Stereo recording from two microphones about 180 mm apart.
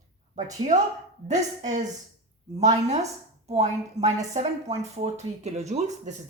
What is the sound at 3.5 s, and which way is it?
Speech, 35° right (ahead or behind).